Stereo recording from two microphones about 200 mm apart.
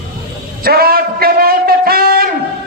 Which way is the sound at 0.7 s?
50° right (ahead or behind).